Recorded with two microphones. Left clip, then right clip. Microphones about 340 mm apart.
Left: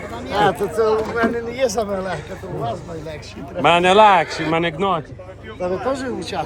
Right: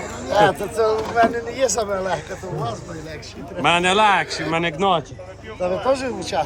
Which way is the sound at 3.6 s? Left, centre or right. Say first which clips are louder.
Left 4 dB; centre.